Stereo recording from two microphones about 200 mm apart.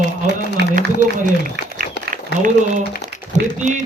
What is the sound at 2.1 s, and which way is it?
A man's voice, 40° right (ahead or behind).